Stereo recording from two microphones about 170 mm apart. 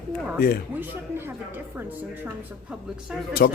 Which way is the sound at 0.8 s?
10° right (ahead or behind).